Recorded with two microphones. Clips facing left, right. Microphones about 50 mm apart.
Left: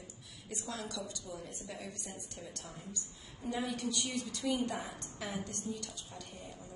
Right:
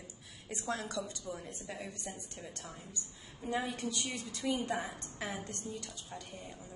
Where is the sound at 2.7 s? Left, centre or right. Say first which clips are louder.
Left 1 dB; centre.